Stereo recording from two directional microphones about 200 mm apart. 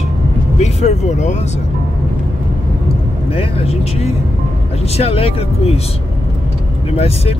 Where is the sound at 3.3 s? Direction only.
30° left (ahead or behind).